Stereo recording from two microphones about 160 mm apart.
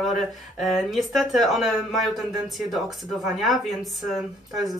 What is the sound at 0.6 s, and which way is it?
Speech, centre (ahead or behind).